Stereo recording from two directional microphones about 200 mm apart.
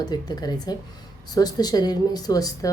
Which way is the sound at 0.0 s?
20° left (ahead or behind).